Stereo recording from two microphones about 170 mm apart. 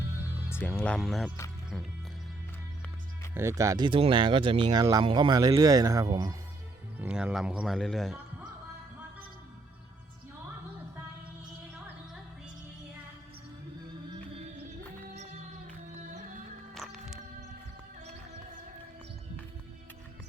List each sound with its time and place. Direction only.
0.5 s speech: 15° left (ahead or behind)
3.3 s speech: 15° right (ahead or behind)
6.9 s speech: 10° right (ahead or behind)
15.1 s music: 40° right (ahead or behind)
16.7 s music: centre (ahead or behind)